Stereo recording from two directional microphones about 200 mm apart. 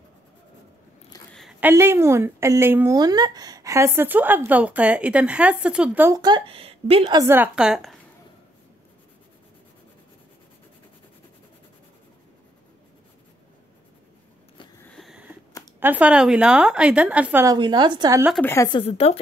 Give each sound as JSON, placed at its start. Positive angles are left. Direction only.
{"t": 1.3, "sound": "a woman's voice", "side_deg": 0}
{"t": 14.9, "sound": "a sound", "side_deg": 0}
{"t": 15.8, "sound": "a woman's voice", "side_deg": -5}
{"t": 17.6, "sound": "a woman's voice", "side_deg": -20}
{"t": 18.4, "sound": "a woman's voice", "side_deg": 15}
{"t": 18.8, "sound": "speech", "side_deg": 30}